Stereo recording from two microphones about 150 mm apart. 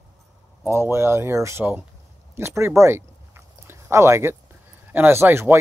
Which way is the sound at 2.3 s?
15° right (ahead or behind).